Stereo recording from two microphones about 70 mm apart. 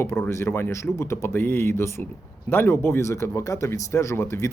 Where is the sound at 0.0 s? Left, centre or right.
Left.